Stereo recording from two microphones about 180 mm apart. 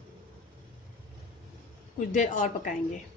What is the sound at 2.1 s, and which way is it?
Speech, 45° left (ahead or behind).